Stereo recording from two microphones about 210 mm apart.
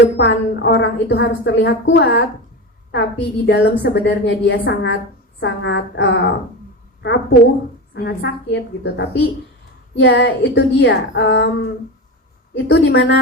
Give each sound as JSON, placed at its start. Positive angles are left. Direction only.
{"t": 0.2, "sound": "a woman's voice", "side_deg": 55}
{"t": 9.9, "sound": "a woman's voice", "side_deg": 65}
{"t": 12.6, "sound": "a woman's voice", "side_deg": 55}